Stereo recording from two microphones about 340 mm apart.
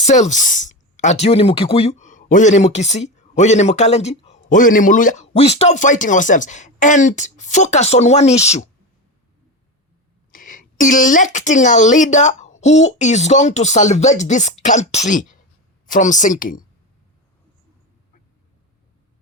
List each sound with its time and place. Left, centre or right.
0.0 s speech: left
10.3 s speech: left